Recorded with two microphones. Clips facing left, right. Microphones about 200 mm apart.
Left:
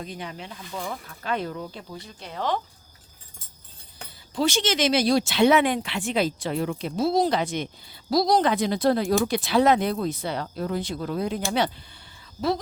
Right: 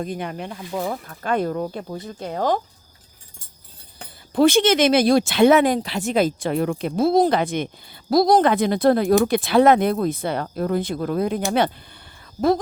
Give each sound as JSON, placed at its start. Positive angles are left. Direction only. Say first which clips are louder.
{"t": 0.0, "sound": "speech", "louder": "right 8 dB", "side_deg": -55}
{"t": 4.4, "sound": "speech", "louder": "right 8 dB", "side_deg": -55}